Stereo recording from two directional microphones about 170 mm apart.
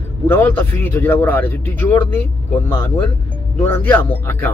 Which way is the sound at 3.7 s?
10° left (ahead or behind).